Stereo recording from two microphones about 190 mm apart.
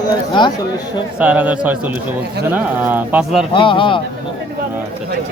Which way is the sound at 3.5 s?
25° left (ahead or behind).